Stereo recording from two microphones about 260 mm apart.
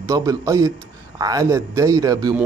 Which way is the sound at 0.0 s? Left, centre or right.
Centre.